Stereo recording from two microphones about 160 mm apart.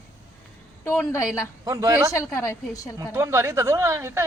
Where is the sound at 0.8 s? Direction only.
15° left (ahead or behind).